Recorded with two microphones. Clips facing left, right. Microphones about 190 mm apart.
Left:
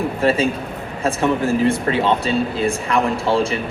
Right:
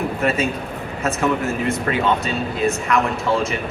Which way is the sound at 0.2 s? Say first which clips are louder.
Left 5 dB; 30° left (ahead or behind).